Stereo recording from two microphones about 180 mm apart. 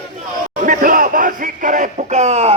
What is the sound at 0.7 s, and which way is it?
Music, 50° right (ahead or behind).